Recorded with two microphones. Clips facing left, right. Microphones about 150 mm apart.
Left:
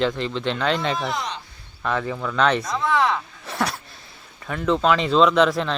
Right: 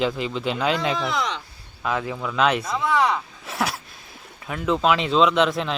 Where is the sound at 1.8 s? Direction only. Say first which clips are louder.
Left 1 dB; 5° right (ahead or behind).